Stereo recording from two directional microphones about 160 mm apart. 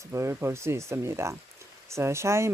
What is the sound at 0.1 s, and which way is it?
Speech, 15° right (ahead or behind).